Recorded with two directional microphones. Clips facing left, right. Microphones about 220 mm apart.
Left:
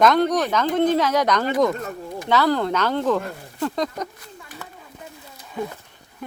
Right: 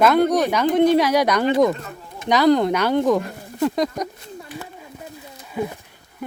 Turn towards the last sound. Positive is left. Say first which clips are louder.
# right 3 dB
turn(degrees=-15)  # may be behind; listen again after turning